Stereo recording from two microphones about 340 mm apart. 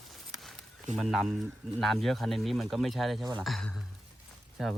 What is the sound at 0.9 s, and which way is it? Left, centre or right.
Speech, centre.